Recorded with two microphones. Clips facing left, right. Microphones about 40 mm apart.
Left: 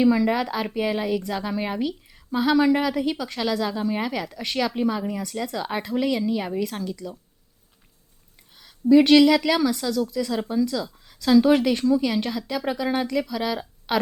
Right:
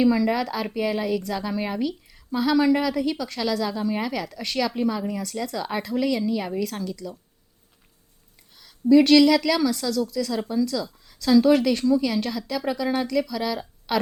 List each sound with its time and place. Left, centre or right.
0.0 s a woman's voice: centre
8.5 s a woman's voice: centre